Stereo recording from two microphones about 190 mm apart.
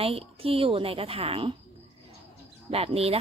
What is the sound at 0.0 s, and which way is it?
A woman's voice, 30° right (ahead or behind).